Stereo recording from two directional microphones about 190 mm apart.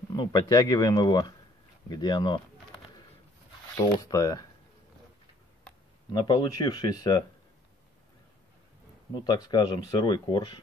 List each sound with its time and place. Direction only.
0.1 s speech: 20° left (ahead or behind)
3.7 s speech: 15° left (ahead or behind)
6.1 s speech: 20° left (ahead or behind)
9.1 s speech: 20° left (ahead or behind)